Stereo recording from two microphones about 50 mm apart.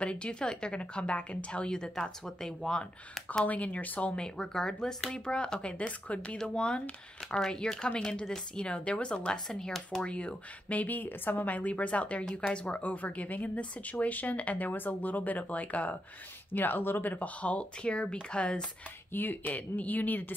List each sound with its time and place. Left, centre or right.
0.0 s a woman's voice: left
3.4 s a woman's voice: left
4.4 s a woman's voice: centre; by 16.0 s left
16.5 s a woman's voice: left
19.1 s speech: left